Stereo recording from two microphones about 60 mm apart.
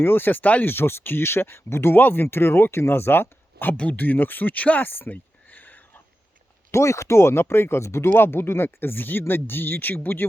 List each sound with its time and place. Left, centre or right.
0.0 s speech: left
6.7 s speech: left